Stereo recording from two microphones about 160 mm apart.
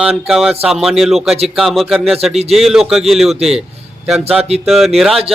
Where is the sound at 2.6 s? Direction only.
Centre (ahead or behind).